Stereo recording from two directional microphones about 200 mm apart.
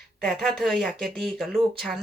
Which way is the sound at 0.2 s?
5° left (ahead or behind).